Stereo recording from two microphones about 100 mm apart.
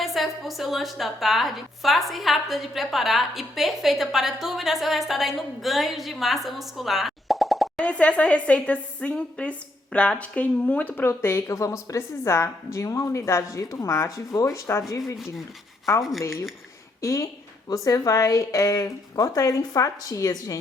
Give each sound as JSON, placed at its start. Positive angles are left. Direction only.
{"t": 0.0, "sound": "a woman's voice", "side_deg": 0}
{"t": 7.9, "sound": "a woman's voice", "side_deg": 10}
{"t": 16.2, "sound": "a woman's voice", "side_deg": 30}